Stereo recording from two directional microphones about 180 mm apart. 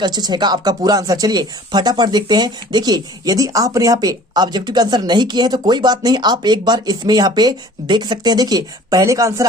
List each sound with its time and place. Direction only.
0.0 s speech: 25° right (ahead or behind)